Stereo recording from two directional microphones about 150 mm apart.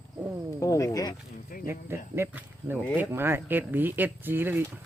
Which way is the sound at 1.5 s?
65° left (ahead or behind).